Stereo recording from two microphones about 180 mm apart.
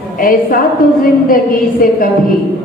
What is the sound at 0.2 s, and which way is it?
A woman's voice, 50° left (ahead or behind).